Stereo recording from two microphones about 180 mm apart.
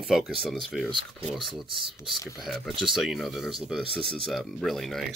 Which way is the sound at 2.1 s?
20° left (ahead or behind).